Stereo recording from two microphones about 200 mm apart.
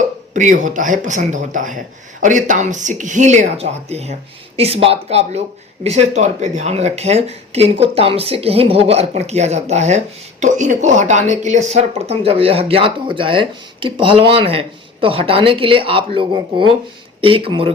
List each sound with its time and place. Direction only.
0.3 s speech: 40° right (ahead or behind)